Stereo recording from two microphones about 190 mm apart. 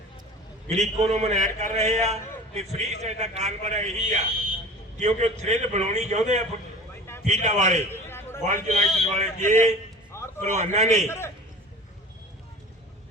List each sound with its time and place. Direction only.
0.7 s a man's voice: 35° right (ahead or behind)
8.0 s a sound: 10° left (ahead or behind)
8.4 s a man's voice: 40° right (ahead or behind)
9.4 s a man's voice: 10° left (ahead or behind)
10.1 s music: 15° left (ahead or behind)
10.5 s a man's voice: 35° right (ahead or behind)
11.0 s a man's voice: 15° left (ahead or behind)